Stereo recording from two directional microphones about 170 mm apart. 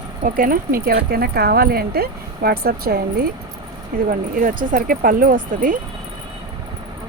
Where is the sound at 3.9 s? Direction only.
55° right (ahead or behind).